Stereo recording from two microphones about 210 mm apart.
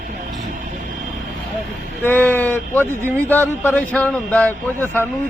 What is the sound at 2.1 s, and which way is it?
A man's voice, 10° left (ahead or behind).